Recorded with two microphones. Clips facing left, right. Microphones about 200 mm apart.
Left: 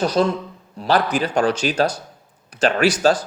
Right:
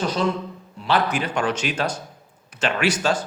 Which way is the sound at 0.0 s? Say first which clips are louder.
Left 4 dB; 40° left (ahead or behind).